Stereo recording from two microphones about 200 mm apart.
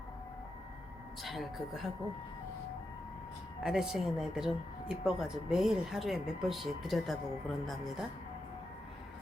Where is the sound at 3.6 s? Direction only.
5° right (ahead or behind).